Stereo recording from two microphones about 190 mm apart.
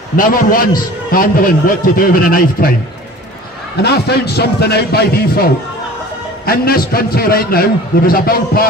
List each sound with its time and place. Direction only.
0.1 s a man's voice: 45° left (ahead or behind)
3.8 s a man's voice: 60° left (ahead or behind)